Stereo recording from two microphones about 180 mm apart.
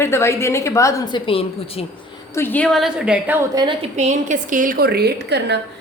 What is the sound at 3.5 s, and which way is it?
Speech, 25° right (ahead or behind).